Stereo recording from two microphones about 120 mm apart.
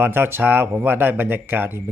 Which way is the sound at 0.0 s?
20° right (ahead or behind).